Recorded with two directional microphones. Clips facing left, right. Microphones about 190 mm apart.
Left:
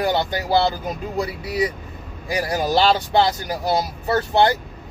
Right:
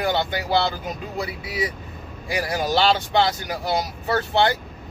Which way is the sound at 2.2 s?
35° left (ahead or behind).